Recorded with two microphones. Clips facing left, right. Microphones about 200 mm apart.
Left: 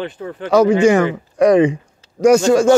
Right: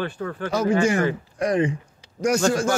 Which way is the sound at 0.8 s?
75° left (ahead or behind).